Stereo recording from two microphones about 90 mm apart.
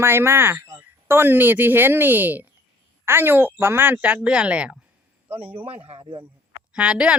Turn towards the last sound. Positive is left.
turn(degrees=-10)  # may be behind; listen again after turning